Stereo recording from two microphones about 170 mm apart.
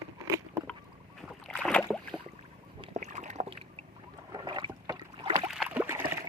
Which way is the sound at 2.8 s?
40° right (ahead or behind).